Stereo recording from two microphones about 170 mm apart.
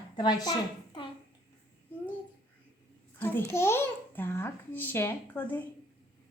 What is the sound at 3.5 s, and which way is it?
A child's voice, 15° left (ahead or behind).